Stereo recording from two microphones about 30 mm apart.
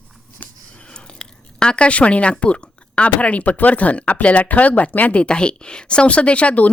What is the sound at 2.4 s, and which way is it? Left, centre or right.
Speech, left.